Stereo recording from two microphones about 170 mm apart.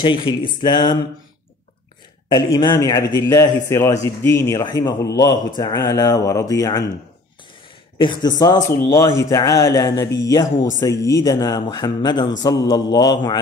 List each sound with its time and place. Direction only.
0.0 s a man's voice: 30° left (ahead or behind)
2.3 s a man's voice: 25° left (ahead or behind)
8.0 s a man's voice: 25° left (ahead or behind)